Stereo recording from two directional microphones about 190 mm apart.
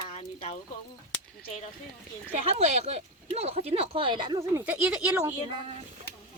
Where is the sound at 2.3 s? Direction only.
35° right (ahead or behind); by 5.3 s 5° right (ahead or behind).